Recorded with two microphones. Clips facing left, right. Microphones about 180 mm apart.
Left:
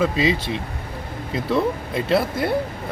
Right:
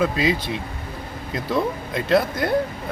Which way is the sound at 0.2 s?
25° left (ahead or behind).